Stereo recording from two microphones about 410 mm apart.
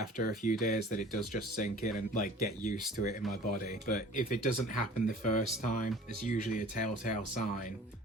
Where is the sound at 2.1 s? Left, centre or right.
Centre.